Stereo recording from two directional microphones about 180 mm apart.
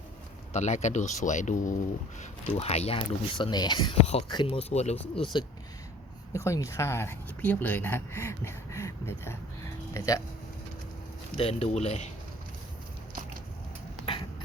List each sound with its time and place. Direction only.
0.5 s speech: 40° left (ahead or behind); by 3.9 s 25° left (ahead or behind)
4.0 s speech: 40° left (ahead or behind)
5.3 s speech: 25° left (ahead or behind)
11.3 s speech: 35° left (ahead or behind)
14.0 s a sound: 30° left (ahead or behind)